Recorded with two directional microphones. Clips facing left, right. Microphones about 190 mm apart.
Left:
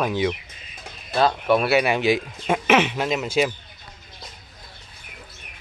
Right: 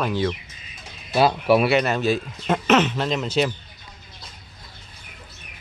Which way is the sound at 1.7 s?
10° left (ahead or behind).